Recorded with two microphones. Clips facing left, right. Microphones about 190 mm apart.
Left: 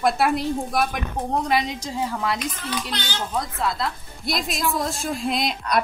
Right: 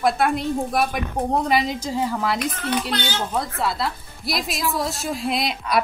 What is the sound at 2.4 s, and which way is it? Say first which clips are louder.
Speech: right 5 dB; 60° right (ahead or behind).